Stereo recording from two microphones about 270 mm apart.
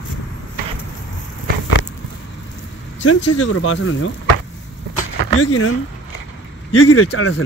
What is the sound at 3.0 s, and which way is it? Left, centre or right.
Speech, left.